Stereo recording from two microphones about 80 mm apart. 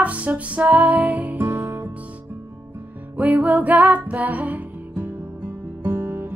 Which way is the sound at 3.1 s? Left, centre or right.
Right.